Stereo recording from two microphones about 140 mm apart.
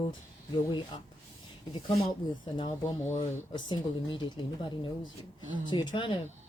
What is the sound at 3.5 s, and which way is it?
Speech, 30° left (ahead or behind).